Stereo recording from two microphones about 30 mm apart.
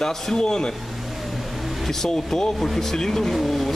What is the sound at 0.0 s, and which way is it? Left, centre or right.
Speech, centre.